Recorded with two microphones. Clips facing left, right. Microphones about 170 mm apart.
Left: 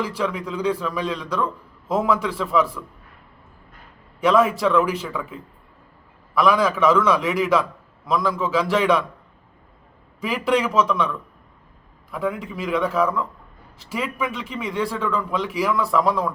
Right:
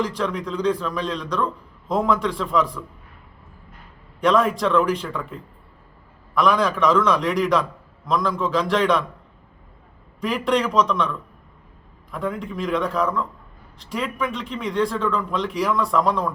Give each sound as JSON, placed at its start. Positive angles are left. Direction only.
{"t": 0.0, "sound": "a man's voice", "side_deg": 5}
{"t": 4.2, "sound": "a man's voice", "side_deg": 5}
{"t": 10.2, "sound": "a man's voice", "side_deg": 5}
{"t": 12.1, "sound": "a man's voice", "side_deg": 5}